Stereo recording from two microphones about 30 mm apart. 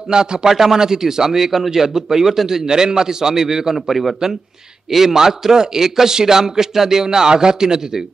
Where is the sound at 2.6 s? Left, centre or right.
Right.